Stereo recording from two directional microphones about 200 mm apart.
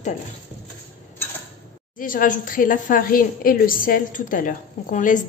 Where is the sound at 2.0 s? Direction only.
45° left (ahead or behind).